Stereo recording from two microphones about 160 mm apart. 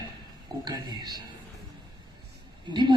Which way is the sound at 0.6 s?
25° right (ahead or behind).